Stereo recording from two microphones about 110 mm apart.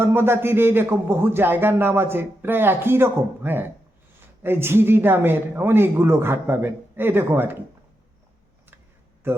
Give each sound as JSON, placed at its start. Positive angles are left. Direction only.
{"t": 0.0, "sound": "speech", "side_deg": -20}